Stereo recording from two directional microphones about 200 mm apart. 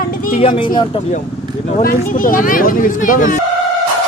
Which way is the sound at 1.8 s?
45° left (ahead or behind).